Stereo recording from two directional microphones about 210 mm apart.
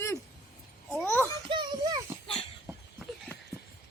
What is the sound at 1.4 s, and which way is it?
Speech, 20° right (ahead or behind).